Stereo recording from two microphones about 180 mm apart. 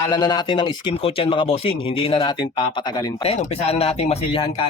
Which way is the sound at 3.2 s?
35° left (ahead or behind).